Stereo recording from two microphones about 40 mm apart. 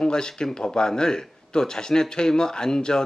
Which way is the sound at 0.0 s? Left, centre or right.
Centre.